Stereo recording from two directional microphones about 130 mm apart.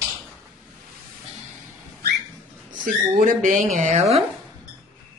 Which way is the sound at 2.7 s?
85° right.